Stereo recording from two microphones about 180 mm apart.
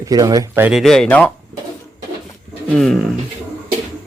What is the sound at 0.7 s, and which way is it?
Speech, centre (ahead or behind).